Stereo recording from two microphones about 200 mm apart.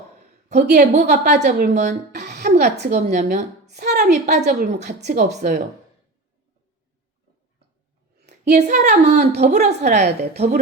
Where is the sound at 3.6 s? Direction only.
55° right (ahead or behind).